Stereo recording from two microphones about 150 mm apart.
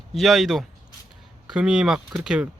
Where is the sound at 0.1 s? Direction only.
Centre (ahead or behind).